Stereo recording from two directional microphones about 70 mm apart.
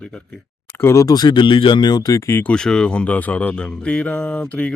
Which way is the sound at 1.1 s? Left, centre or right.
Left.